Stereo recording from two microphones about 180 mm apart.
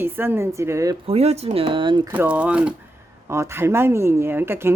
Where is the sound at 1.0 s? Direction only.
35° right (ahead or behind).